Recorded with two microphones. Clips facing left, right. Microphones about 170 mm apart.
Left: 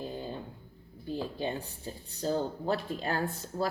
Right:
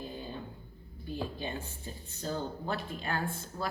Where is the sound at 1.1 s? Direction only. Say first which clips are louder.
Left 3 dB; 35° left (ahead or behind).